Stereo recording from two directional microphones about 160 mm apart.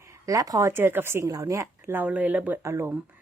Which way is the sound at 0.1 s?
20° right (ahead or behind).